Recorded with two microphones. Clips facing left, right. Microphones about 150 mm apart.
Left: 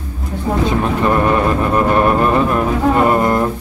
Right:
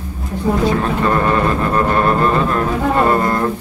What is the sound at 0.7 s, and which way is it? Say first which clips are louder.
Speech: left 1 dB; 15° left (ahead or behind).